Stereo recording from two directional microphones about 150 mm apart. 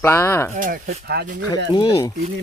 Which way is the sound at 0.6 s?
80° right.